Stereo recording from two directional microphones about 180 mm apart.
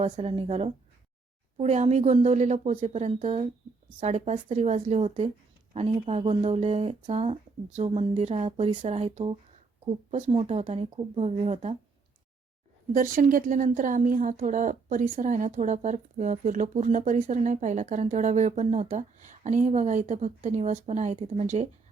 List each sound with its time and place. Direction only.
0.0 s speech: 35° right (ahead or behind)
12.9 s speech: 50° right (ahead or behind)